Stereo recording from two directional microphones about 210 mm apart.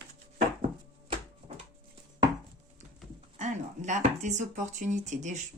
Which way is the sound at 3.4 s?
35° right (ahead or behind).